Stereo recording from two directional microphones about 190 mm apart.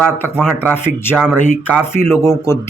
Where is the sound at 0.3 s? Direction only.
5° right (ahead or behind).